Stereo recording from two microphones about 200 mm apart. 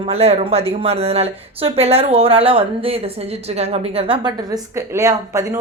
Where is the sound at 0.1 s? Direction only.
30° right (ahead or behind).